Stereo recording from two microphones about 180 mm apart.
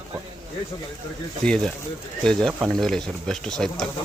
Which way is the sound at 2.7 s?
Centre (ahead or behind).